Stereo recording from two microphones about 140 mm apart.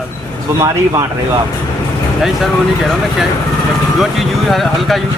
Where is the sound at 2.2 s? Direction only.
Centre (ahead or behind).